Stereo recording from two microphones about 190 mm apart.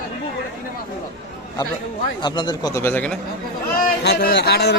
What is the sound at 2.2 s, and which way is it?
Speech, 20° left (ahead or behind).